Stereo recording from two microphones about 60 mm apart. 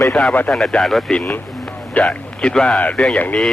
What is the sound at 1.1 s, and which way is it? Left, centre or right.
Speech, centre.